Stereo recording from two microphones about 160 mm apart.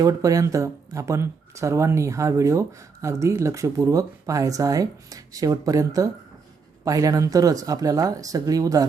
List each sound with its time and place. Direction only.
0.0 s speech: 20° right (ahead or behind)